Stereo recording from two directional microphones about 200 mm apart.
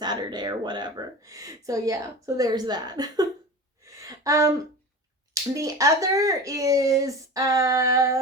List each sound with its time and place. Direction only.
0.0 s speech: 20° right (ahead or behind)
3.8 s a sound: 15° right (ahead or behind)
5.3 s speech: 15° right (ahead or behind)